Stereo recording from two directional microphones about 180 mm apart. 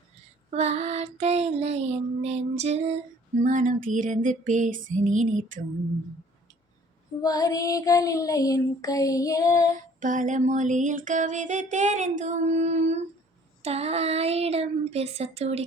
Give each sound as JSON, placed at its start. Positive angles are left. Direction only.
{"t": 0.5, "sound": "music", "side_deg": -35}
{"t": 7.2, "sound": "child singing", "side_deg": 20}
{"t": 10.0, "sound": "music", "side_deg": -45}
{"t": 13.6, "sound": "child singing", "side_deg": -35}